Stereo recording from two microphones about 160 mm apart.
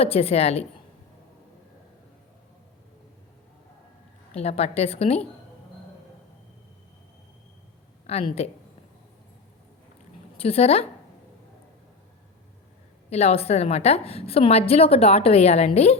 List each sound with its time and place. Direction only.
0.0 s a woman's voice: 40° left (ahead or behind)
4.4 s a woman's voice: 40° left (ahead or behind)
8.0 s speech: 40° left (ahead or behind)
10.3 s a woman's voice: 40° left (ahead or behind)
13.1 s a woman's voice: 40° left (ahead or behind)